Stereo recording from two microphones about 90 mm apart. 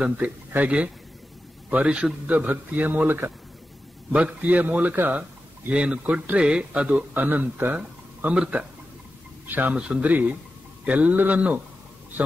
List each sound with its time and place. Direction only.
0.0 s speech: 20° right (ahead or behind)